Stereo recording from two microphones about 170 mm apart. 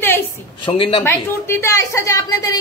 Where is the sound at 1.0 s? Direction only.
15° left (ahead or behind).